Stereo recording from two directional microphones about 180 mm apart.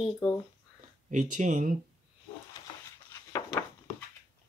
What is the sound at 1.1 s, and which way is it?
Speech, 45° right (ahead or behind).